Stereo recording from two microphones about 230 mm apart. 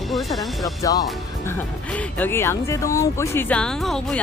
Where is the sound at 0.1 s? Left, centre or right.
Centre.